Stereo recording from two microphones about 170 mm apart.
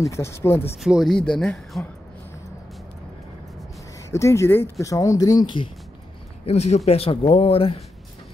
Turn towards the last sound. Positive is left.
turn(degrees=35)  # may be behind; listen again after turning